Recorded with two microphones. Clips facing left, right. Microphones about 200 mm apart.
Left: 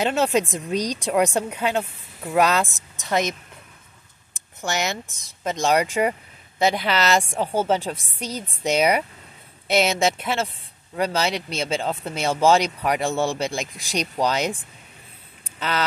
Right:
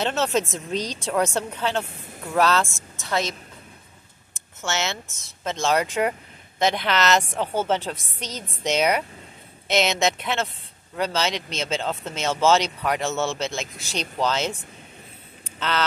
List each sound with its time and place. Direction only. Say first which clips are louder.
0.0 s speech: left 3 dB; 10° left (ahead or behind)
4.6 s speech: left 2 dB; 15° left (ahead or behind)